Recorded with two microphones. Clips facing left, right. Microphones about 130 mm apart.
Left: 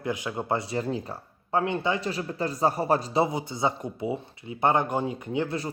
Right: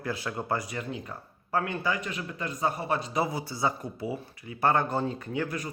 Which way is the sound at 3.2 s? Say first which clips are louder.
Left 3 dB; 20° left (ahead or behind).